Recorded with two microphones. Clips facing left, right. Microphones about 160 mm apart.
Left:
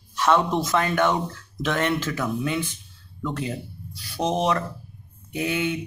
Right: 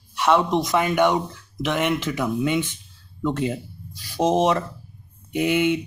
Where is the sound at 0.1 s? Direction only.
10° right (ahead or behind).